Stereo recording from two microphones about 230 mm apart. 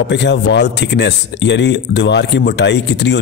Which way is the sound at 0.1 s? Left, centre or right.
Left.